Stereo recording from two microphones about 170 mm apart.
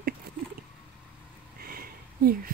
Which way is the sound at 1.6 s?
60° right (ahead or behind).